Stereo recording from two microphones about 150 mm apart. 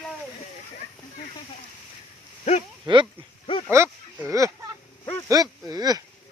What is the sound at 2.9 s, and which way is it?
Speech, 30° right (ahead or behind).